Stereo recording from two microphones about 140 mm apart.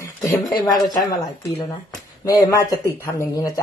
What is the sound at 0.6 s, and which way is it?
Speech, 25° left (ahead or behind).